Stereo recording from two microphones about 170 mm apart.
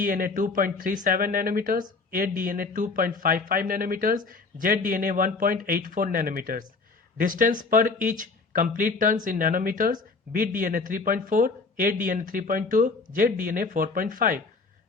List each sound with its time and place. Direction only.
0.0 s speech: 55° right (ahead or behind)